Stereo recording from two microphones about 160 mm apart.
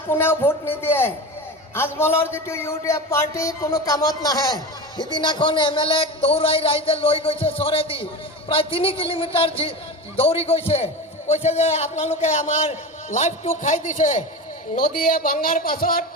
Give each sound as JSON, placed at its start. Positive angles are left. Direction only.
{"t": 0.1, "sound": "a man's voice", "side_deg": 15}